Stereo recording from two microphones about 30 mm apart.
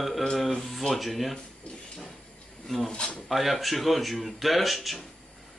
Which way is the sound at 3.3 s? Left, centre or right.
Centre.